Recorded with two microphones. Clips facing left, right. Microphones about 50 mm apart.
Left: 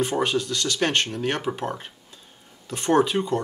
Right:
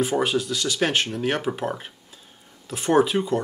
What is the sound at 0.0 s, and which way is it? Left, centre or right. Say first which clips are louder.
Speech: right 1 dB; centre.